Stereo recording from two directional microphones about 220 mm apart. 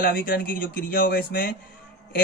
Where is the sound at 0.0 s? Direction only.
40° left (ahead or behind).